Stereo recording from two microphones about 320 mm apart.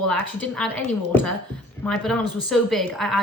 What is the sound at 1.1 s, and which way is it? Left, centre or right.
A woman's voice, centre.